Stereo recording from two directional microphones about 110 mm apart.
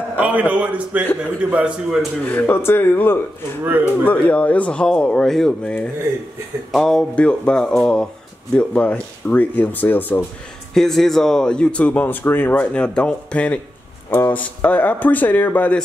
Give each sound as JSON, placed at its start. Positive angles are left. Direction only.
{"t": 0.2, "sound": "a man's voice", "side_deg": -15}
{"t": 2.2, "sound": "speech", "side_deg": 15}
{"t": 10.7, "sound": "speech", "side_deg": 5}